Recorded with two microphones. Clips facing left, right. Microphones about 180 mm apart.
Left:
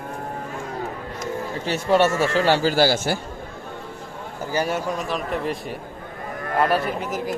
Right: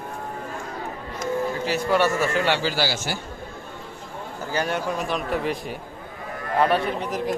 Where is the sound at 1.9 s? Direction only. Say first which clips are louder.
Left 4 dB; 25° left (ahead or behind); by 3.1 s 50° left (ahead or behind).